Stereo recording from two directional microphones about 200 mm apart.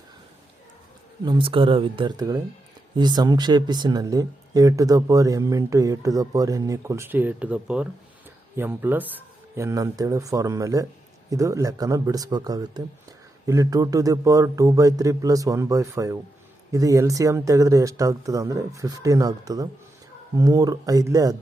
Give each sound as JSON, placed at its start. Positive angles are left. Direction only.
{"t": 1.2, "sound": "speech", "side_deg": -25}